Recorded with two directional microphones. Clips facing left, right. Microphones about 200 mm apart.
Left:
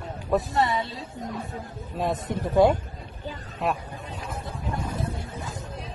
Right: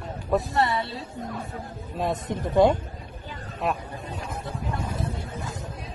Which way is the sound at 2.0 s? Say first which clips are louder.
Even; 5° left (ahead or behind).